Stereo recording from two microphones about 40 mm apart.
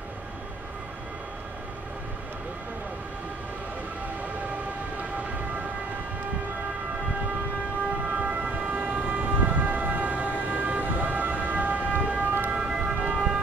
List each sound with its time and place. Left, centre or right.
8.1 s vehicle: right
12.0 s siren: right
12.6 s vehicle: centre